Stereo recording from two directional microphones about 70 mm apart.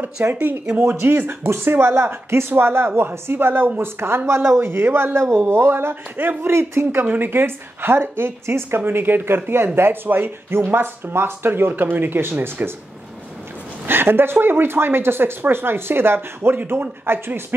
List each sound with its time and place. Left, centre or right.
0.0 s speech: right
13.8 s speech: right